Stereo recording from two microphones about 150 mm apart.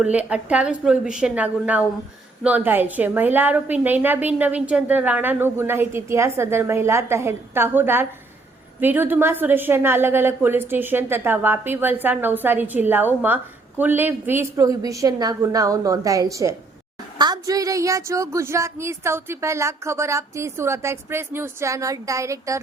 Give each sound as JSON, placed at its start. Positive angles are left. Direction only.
{"t": 0.0, "sound": "a woman's voice", "side_deg": -10}